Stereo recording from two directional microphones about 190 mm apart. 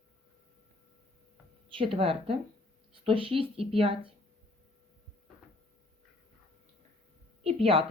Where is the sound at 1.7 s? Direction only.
30° right (ahead or behind).